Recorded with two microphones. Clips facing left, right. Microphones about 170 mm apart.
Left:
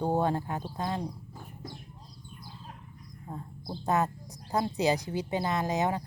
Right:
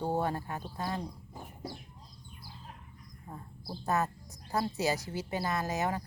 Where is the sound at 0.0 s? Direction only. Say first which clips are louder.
Left 4 dB; 20° left (ahead or behind).